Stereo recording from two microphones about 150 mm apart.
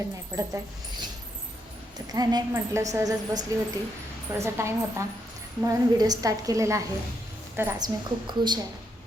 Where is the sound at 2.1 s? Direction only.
25° right (ahead or behind).